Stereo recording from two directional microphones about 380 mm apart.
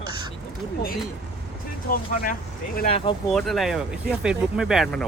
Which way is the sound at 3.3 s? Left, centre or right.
Centre.